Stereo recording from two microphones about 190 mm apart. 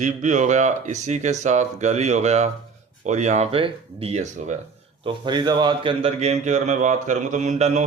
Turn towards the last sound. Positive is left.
turn(degrees=-40)  # may be behind; listen again after turning